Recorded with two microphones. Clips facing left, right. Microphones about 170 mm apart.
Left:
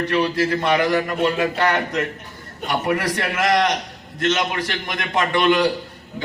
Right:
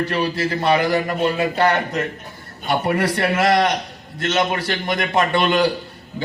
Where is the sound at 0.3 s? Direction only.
30° right (ahead or behind).